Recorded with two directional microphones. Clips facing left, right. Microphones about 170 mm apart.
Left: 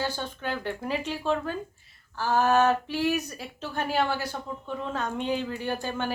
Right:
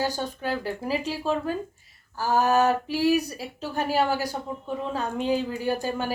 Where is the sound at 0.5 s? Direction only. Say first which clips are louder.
Right 1 dB; 5° right (ahead or behind).